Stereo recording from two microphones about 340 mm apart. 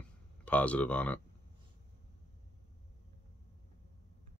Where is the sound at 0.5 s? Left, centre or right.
Centre.